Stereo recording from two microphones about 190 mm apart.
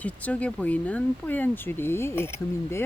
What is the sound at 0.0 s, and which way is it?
Speech, 5° left (ahead or behind).